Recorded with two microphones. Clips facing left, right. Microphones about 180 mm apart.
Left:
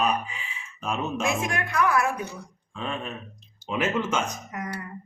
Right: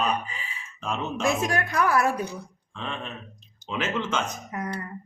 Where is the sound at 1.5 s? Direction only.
35° right (ahead or behind).